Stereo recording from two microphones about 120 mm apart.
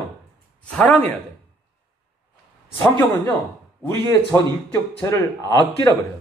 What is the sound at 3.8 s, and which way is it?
Speech, 20° left (ahead or behind).